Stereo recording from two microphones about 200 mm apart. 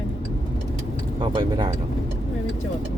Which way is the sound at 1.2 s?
25° right (ahead or behind).